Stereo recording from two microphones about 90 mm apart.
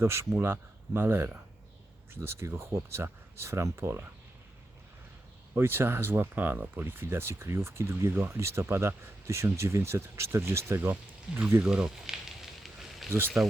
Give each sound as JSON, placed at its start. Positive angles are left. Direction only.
{"t": 0.0, "sound": "speech", "side_deg": -30}
{"t": 5.5, "sound": "speech", "side_deg": -25}
{"t": 11.6, "sound": "speech", "side_deg": -10}
{"t": 13.1, "sound": "speech", "side_deg": -25}